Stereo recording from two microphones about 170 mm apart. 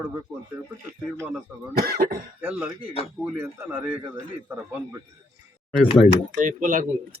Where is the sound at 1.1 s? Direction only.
15° right (ahead or behind).